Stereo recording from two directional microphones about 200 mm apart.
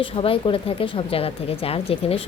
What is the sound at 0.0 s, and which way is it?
Speech, 25° left (ahead or behind).